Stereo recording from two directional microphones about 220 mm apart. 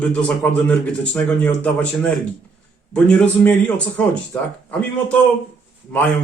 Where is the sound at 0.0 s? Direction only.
5° left (ahead or behind).